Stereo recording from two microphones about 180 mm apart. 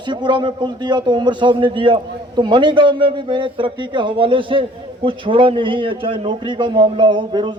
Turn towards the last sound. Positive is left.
turn(degrees=-25)  # may be behind; listen again after turning